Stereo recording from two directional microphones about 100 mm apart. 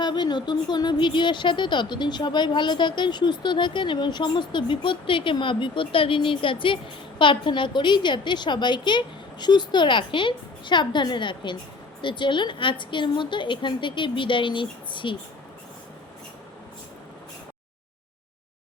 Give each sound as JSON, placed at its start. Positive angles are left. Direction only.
{"t": 0.0, "sound": "a woman's voice", "side_deg": 50}